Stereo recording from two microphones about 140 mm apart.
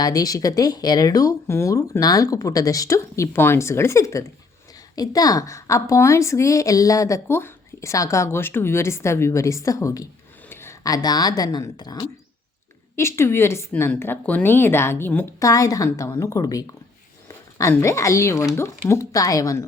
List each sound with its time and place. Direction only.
0.0 s a woman's voice: 25° left (ahead or behind)